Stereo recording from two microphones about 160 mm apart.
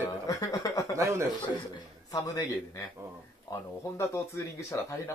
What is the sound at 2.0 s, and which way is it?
Speech, 20° left (ahead or behind).